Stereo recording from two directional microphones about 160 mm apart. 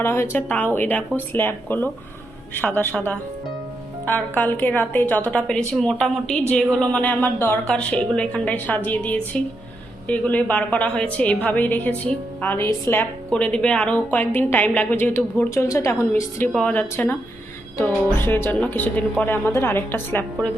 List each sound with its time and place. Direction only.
0.0 s a woman's voice: 15° left (ahead or behind)
18.2 s a woman's voice: 15° left (ahead or behind)